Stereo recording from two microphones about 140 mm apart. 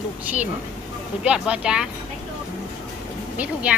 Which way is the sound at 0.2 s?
10° right (ahead or behind).